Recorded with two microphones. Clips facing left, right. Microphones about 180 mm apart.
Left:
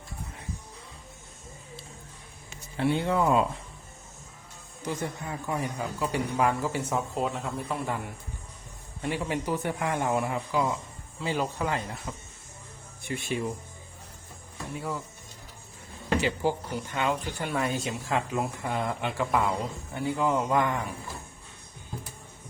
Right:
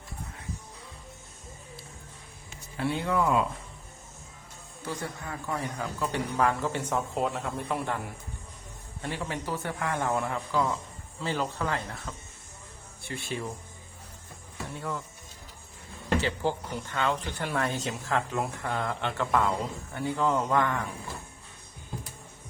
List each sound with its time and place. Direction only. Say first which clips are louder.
2.7 s speech: left 2 dB; 25° left (ahead or behind)
4.8 s speech: left 3 dB; 20° left (ahead or behind); by 7.9 s centre (ahead or behind)
9.0 s speech: left 4 dB; 15° left (ahead or behind)
14.8 s speech: left 1 dB; 5° left (ahead or behind)
16.2 s speech: left 2 dB; 10° left (ahead or behind)